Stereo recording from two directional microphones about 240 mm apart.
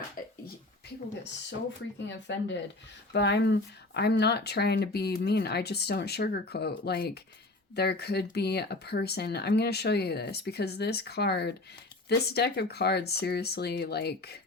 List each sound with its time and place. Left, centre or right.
2.0 s speech: left